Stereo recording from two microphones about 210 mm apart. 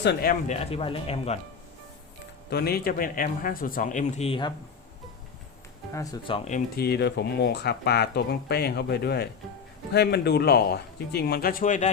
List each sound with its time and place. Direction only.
0.0 s speech: 50° left (ahead or behind)
0.5 s speech: 30° left (ahead or behind)
2.5 s speech: 50° left (ahead or behind); by 4.5 s 25° left (ahead or behind)
5.9 s speech: 15° left (ahead or behind)
6.7 s speech: 50° left (ahead or behind)